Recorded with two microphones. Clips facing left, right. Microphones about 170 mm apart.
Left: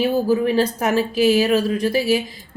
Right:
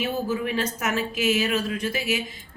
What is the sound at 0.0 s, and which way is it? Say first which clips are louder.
Speech: left 8 dB; 35° left (ahead or behind).